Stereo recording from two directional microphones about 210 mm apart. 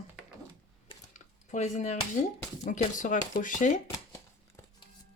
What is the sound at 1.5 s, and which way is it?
Speech, 35° left (ahead or behind).